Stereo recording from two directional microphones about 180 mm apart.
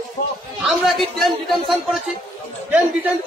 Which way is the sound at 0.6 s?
Centre (ahead or behind).